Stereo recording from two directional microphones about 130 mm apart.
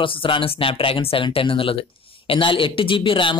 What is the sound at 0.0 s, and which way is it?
Speech, 40° left (ahead or behind).